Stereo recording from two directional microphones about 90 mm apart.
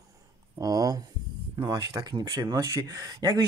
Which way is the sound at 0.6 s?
45° right (ahead or behind).